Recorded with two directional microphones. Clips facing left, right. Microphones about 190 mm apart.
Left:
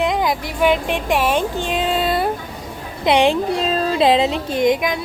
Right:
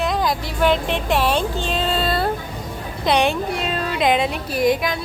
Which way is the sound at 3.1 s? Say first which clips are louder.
Left 4 dB; 25° left (ahead or behind).